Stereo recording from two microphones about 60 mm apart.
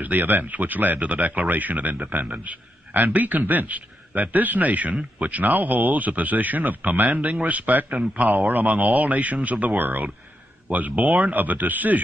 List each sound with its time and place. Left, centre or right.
0.0 s speech: right